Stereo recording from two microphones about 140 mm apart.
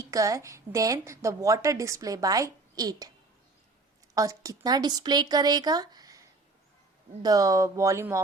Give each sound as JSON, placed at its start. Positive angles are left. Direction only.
{"t": 0.1, "sound": "a woman's voice", "side_deg": -25}
{"t": 4.1, "sound": "a woman's voice", "side_deg": -25}